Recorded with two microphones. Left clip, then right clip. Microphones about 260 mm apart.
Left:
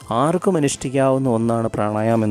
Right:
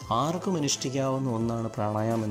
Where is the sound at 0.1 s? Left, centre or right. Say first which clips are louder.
Left 9 dB; left.